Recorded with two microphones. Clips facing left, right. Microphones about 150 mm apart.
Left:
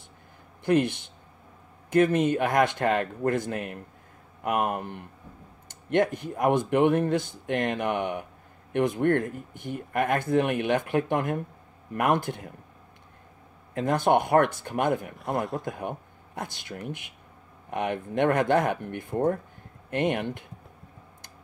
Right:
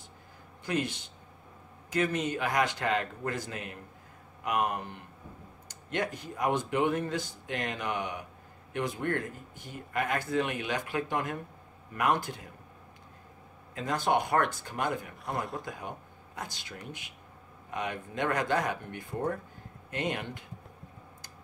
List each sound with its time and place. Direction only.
0.7 s a man's voice: 55° left (ahead or behind)
13.7 s speech: 55° left (ahead or behind)
16.3 s a man's voice: 55° left (ahead or behind)